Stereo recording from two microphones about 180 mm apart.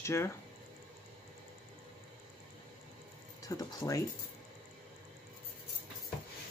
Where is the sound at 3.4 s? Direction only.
20° left (ahead or behind).